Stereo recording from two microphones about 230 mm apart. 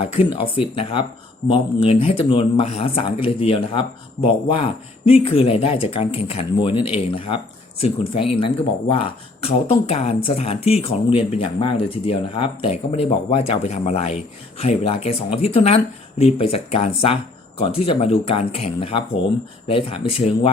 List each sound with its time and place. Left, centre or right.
0.0 s speech: left